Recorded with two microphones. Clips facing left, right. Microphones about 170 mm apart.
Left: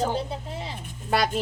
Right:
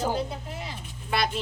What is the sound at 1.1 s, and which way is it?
Speech, 40° left (ahead or behind).